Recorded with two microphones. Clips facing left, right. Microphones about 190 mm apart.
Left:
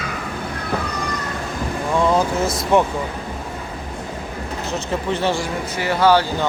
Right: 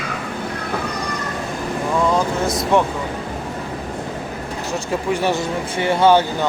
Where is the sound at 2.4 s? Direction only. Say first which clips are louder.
Right 1 dB; centre (ahead or behind).